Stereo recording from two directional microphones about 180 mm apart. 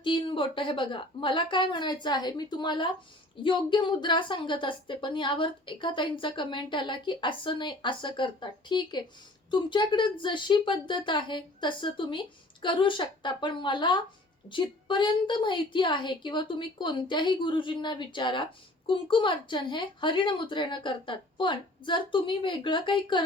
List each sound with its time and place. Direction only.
0.0 s a woman's voice: 30° left (ahead or behind)